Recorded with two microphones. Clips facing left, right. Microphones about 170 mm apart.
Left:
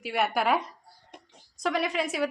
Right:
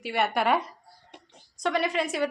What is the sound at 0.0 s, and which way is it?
Speech, centre (ahead or behind).